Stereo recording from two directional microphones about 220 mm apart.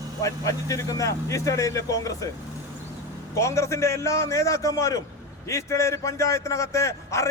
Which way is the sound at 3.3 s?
15° left (ahead or behind).